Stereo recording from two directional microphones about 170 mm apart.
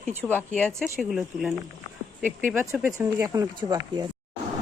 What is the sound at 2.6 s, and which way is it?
Speech, 15° right (ahead or behind).